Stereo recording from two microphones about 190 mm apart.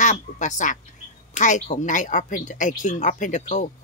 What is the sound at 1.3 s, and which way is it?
Speech, 40° left (ahead or behind).